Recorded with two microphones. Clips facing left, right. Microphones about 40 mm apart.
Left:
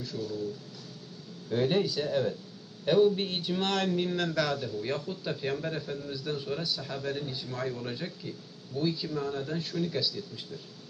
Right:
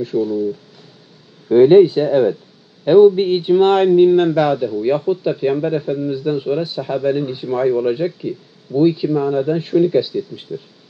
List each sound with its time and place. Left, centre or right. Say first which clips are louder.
0.0 s speech: right 17 dB; right
1.5 s speech: right 19 dB; right